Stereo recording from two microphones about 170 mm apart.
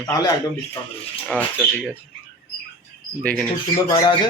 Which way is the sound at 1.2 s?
5° left (ahead or behind).